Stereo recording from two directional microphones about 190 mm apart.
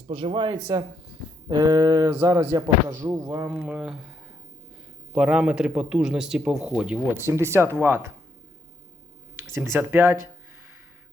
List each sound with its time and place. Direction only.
0.1 s speech: 25° right (ahead or behind); by 4.1 s 5° right (ahead or behind)
5.1 s speech: 5° right (ahead or behind)
9.3 s speech: 15° right (ahead or behind)